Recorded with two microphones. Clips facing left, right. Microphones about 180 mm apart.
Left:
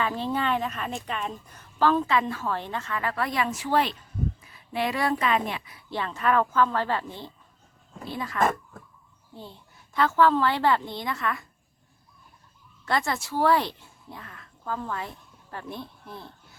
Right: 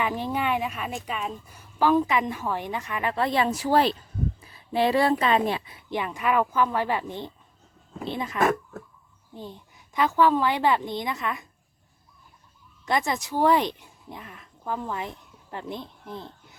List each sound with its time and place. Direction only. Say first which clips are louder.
0.0 s a woman's voice: even; 15° right (ahead or behind); by 5.8 s 30° right (ahead or behind)
5.9 s a woman's voice: even; 15° right (ahead or behind)
12.8 s speech: right 1 dB; 20° right (ahead or behind)